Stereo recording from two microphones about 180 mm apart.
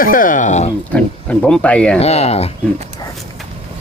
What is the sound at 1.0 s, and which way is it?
Speech, 5° left (ahead or behind).